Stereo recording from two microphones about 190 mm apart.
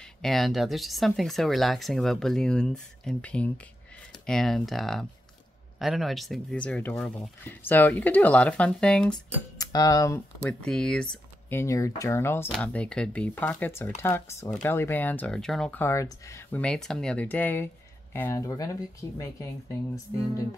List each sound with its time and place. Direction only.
0.2 s speech: centre (ahead or behind)
9.6 s speech: 20° left (ahead or behind)
10.6 s speech: 5° left (ahead or behind)